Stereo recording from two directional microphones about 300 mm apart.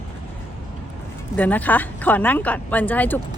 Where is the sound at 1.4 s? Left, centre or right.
Centre.